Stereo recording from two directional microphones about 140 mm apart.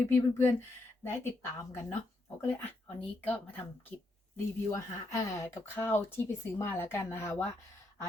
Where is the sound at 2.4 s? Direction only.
15° left (ahead or behind).